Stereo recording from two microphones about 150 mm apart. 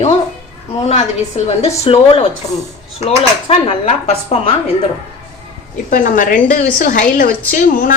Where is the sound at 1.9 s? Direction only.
35° left (ahead or behind).